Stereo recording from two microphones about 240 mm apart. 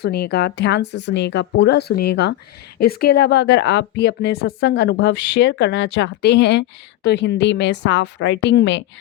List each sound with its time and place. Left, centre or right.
0.0 s speech: left